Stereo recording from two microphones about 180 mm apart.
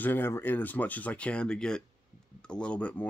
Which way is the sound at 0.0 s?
10° left (ahead or behind).